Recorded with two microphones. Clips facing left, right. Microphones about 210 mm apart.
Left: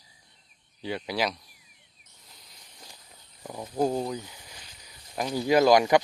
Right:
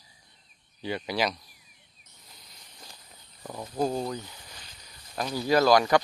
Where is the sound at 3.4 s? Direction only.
10° left (ahead or behind).